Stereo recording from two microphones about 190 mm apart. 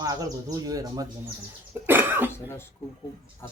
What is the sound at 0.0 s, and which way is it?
Speech, 20° right (ahead or behind).